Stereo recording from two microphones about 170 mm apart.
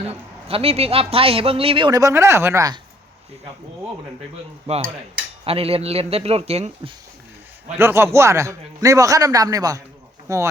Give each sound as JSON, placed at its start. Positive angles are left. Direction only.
{"t": 0.1, "sound": "speech", "side_deg": -35}
{"t": 1.9, "sound": "speech", "side_deg": -20}
{"t": 4.7, "sound": "speech", "side_deg": -40}
{"t": 7.8, "sound": "a man's voice", "side_deg": -15}